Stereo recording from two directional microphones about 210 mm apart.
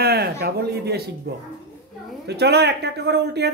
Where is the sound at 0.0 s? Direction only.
50° right (ahead or behind).